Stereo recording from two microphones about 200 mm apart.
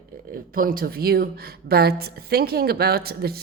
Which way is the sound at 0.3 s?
45° right (ahead or behind).